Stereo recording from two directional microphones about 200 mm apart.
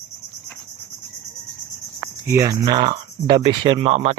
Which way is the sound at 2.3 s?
15° right (ahead or behind).